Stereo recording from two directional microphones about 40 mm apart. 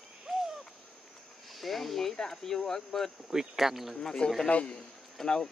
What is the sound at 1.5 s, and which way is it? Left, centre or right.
Speech, centre.